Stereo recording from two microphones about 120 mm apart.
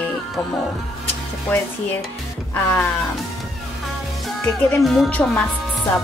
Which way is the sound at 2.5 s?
20° left (ahead or behind).